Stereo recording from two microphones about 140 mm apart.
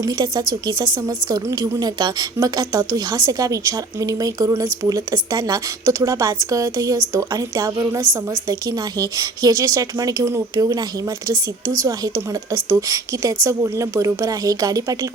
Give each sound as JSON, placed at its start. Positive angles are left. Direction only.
{"t": 0.0, "sound": "a woman's voice", "side_deg": -25}